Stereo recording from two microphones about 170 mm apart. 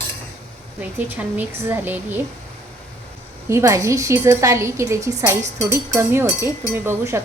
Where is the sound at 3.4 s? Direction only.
15° right (ahead or behind).